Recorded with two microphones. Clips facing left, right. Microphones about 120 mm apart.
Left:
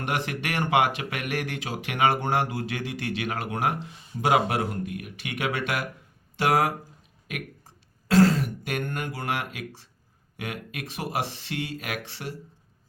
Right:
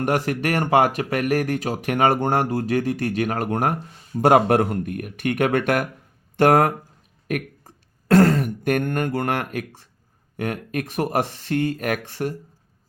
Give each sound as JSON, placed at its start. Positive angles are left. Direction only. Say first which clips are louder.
{"t": 0.0, "sound": "speech", "louder": "right 8 dB", "side_deg": -45}
{"t": 7.3, "sound": "a sound", "louder": "right 10 dB", "side_deg": -50}
{"t": 10.3, "sound": "speech", "louder": "right 9 dB", "side_deg": -45}